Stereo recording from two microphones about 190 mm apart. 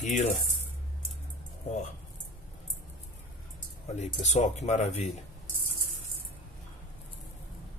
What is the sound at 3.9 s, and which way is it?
Speech, 35° left (ahead or behind).